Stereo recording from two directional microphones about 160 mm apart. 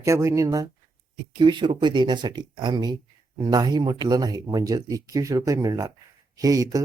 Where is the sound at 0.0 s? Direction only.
20° right (ahead or behind).